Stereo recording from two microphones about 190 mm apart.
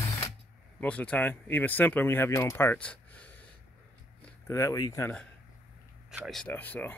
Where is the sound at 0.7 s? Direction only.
5° left (ahead or behind).